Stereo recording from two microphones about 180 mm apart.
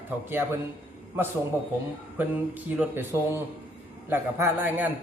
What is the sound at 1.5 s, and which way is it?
A man's voice, 15° right (ahead or behind).